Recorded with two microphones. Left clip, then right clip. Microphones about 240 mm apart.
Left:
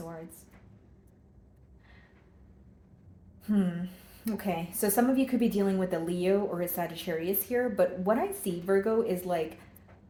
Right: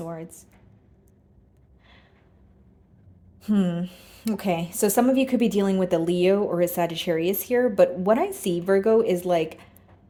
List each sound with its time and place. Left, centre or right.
3.4 s a woman's voice: right